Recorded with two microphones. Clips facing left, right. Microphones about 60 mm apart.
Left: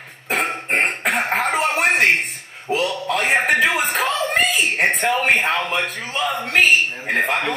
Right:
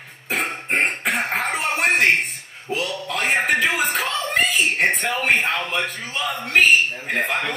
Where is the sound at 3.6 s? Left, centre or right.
Centre.